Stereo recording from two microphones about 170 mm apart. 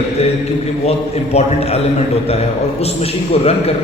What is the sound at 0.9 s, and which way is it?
Speech, 40° left (ahead or behind).